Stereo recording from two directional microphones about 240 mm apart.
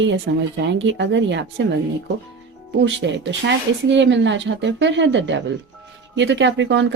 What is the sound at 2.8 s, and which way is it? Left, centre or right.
A woman's voice, right.